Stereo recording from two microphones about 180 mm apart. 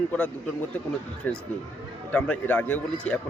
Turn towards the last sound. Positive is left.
turn(degrees=5)  # may be behind; listen again after turning